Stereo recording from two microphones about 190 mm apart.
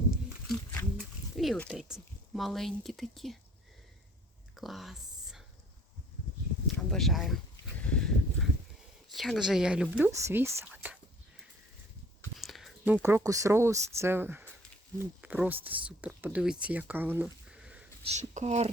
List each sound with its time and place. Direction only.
0.4 s a sound: 5° left (ahead or behind)
4.5 s whispering: centre (ahead or behind)
6.7 s speech: centre (ahead or behind)
7.8 s a sound: 5° left (ahead or behind)
9.0 s speech: centre (ahead or behind)
10.6 s whispering: 10° right (ahead or behind)
12.4 s speech: centre (ahead or behind)
18.0 s speech: 35° right (ahead or behind)